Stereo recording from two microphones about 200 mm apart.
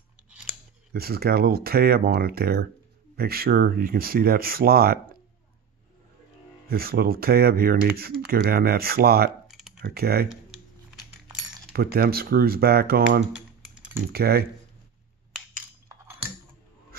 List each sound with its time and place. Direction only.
0.9 s speech: 50° right (ahead or behind)
6.7 s speech: 50° right (ahead or behind)
9.5 s computer keyboard: centre (ahead or behind)
9.8 s speech: 50° right (ahead or behind)
11.7 s speech: 50° right (ahead or behind)